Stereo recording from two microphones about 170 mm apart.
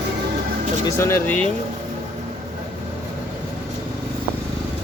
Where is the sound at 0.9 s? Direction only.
15° left (ahead or behind).